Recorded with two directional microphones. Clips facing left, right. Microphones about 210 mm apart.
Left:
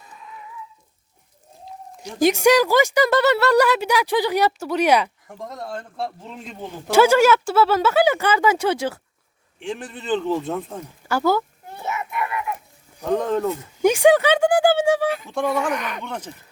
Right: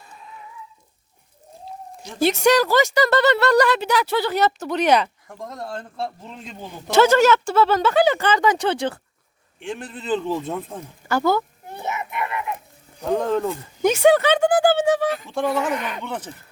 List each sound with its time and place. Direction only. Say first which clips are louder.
2.0 s speech: left 2 dB; 15° left (ahead or behind)
11.7 s children playing: even; 20° right (ahead or behind)
13.0 s speech: even; centre (ahead or behind)
15.7 s speech: even; 25° right (ahead or behind)